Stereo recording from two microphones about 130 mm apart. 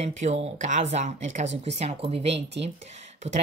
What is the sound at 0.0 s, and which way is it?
Speech, 55° right (ahead or behind).